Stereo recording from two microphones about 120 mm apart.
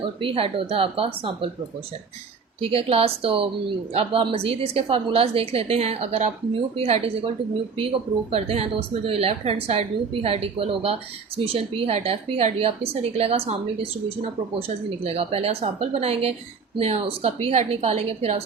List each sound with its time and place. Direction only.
0.0 s speech: 45° right (ahead or behind)
2.6 s a woman's voice: 55° right (ahead or behind)
15.0 s a woman's voice: 55° right (ahead or behind)